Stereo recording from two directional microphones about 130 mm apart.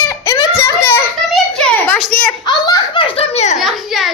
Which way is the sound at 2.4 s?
35° left (ahead or behind).